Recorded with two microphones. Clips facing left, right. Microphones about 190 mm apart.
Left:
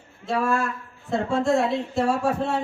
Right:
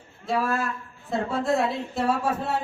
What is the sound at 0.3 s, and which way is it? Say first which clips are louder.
A man's voice: left 2 dB; centre (ahead or behind).